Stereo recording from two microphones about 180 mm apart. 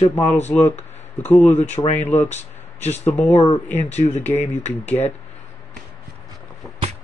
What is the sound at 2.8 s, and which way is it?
Speech, 35° left (ahead or behind).